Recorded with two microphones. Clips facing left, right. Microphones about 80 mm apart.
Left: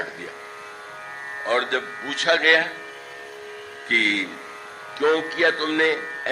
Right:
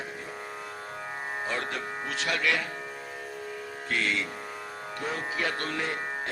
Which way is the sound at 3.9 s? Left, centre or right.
Left.